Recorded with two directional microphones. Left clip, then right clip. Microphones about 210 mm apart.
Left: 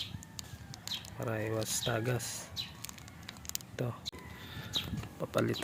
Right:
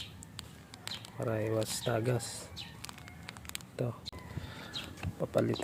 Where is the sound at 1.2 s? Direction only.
5° right (ahead or behind).